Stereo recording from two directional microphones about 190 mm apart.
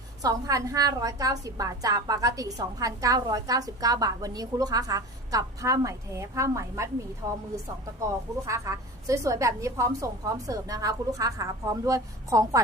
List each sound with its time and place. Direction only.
0.2 s a woman's voice: 20° right (ahead or behind)
8.4 s a woman's voice: 15° right (ahead or behind)